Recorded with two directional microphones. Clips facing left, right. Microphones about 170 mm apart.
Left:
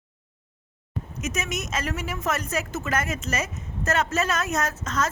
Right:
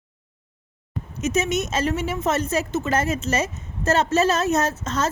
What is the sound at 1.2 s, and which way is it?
A woman's voice, 30° right (ahead or behind).